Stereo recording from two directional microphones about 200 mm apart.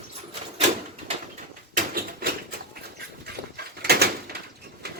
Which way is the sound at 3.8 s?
50° right (ahead or behind).